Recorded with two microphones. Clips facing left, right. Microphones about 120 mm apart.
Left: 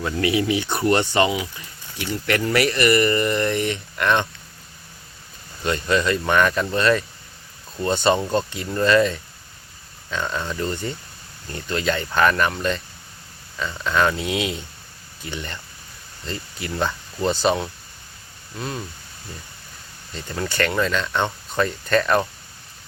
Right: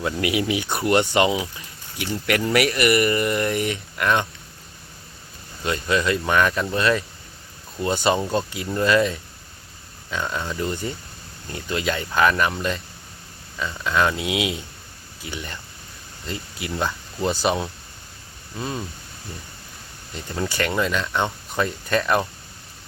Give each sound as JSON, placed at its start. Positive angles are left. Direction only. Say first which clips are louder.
{"t": 0.0, "sound": "speech", "louder": "left 2 dB", "side_deg": -15}
{"t": 0.7, "sound": "speech", "louder": "left 3 dB", "side_deg": 0}
{"t": 1.1, "sound": "speech", "louder": "even", "side_deg": -20}
{"t": 2.0, "sound": "speech", "louder": "even", "side_deg": -10}
{"t": 5.6, "sound": "speech", "louder": "left 1 dB", "side_deg": 0}
{"t": 8.0, "sound": "speech", "louder": "left 2 dB", "side_deg": -5}
{"t": 20.4, "sound": "speech", "louder": "left 1 dB", "side_deg": -10}